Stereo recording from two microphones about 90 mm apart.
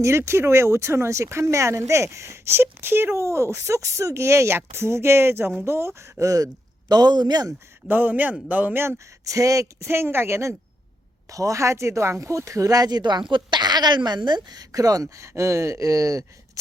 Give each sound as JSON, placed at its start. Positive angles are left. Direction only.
{"t": 0.0, "sound": "speech", "side_deg": -30}
{"t": 7.9, "sound": "a man's voice", "side_deg": -20}
{"t": 9.2, "sound": "speech", "side_deg": -35}